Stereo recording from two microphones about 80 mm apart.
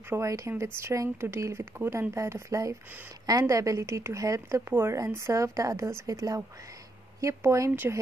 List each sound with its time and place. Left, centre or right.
0.2 s speech: right